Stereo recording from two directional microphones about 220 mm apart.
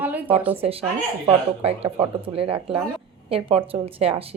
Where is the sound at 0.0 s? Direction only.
5° right (ahead or behind).